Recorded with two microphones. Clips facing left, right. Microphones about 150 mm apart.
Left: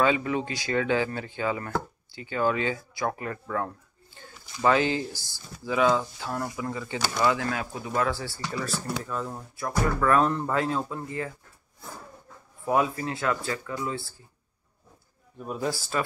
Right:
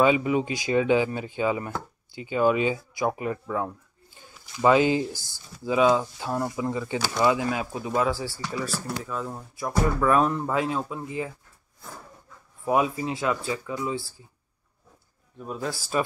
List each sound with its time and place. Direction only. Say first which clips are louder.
0.0 s speech: right 3 dB; 15° right (ahead or behind)
12.6 s speech: right 1 dB; 15° right (ahead or behind)
15.3 s speech: left 2 dB; 5° left (ahead or behind)